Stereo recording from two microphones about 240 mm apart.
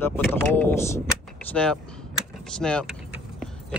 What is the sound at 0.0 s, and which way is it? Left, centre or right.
Speech, centre.